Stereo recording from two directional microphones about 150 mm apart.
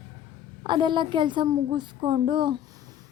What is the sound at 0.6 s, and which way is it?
A woman's voice, 30° right (ahead or behind).